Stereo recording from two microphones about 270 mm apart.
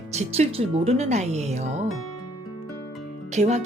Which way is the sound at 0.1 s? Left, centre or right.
Right.